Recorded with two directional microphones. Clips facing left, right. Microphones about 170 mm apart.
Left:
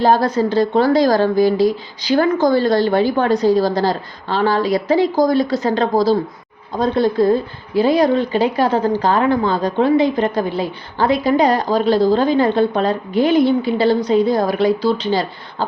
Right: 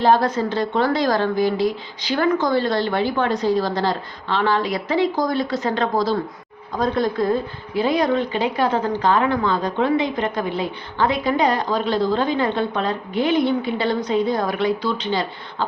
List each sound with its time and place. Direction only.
0.0 s speech: 40° left (ahead or behind)